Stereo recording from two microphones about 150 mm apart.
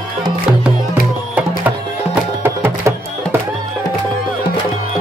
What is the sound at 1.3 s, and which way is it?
Music, 10° right (ahead or behind).